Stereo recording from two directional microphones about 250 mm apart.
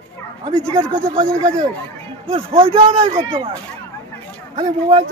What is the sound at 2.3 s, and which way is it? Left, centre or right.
Speech, right.